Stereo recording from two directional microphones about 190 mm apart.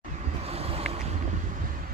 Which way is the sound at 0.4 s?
30° right (ahead or behind).